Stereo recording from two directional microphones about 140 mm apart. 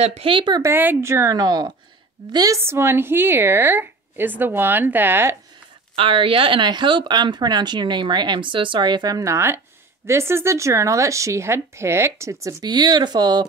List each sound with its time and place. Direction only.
0.0 s speech: 45° right (ahead or behind)
0.6 s speech: 15° right (ahead or behind)
5.9 s speech: 40° right (ahead or behind)